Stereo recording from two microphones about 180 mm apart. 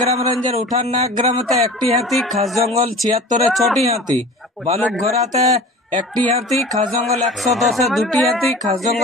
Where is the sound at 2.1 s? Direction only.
Centre (ahead or behind).